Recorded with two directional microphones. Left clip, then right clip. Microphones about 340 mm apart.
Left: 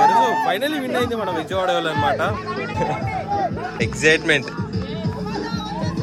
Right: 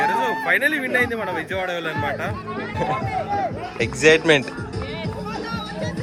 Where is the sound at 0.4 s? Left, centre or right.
Centre.